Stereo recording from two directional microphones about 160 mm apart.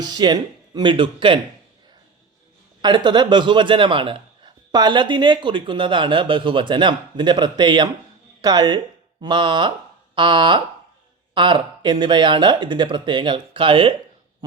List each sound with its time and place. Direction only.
0.0 s a man's voice: 25° right (ahead or behind)
2.8 s a man's voice: 30° right (ahead or behind)